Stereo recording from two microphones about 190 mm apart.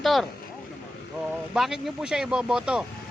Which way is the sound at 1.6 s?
Centre (ahead or behind).